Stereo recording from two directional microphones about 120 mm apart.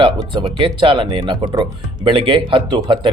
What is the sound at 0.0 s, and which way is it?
Speech, 40° right (ahead or behind).